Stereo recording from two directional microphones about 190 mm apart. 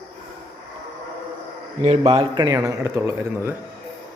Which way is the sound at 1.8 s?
30° right (ahead or behind).